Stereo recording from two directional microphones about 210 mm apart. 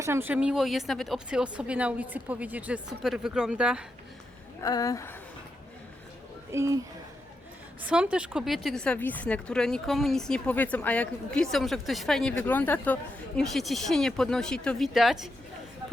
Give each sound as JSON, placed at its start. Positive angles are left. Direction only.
{"t": 0.0, "sound": "speech", "side_deg": -10}
{"t": 4.6, "sound": "speech", "side_deg": 15}
{"t": 6.5, "sound": "speech", "side_deg": -15}